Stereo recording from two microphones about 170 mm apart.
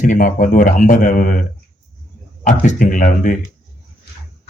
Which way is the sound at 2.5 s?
50° left (ahead or behind).